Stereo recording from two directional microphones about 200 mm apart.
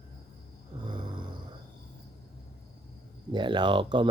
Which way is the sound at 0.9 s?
25° right (ahead or behind).